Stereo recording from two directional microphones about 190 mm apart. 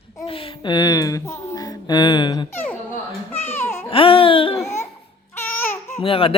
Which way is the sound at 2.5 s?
10° left (ahead or behind).